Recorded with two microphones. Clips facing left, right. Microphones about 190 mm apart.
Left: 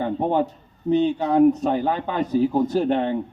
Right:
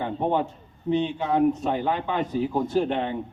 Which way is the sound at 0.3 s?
40° left (ahead or behind).